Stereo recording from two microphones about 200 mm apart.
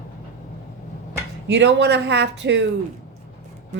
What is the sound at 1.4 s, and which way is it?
A woman's voice, 60° right (ahead or behind).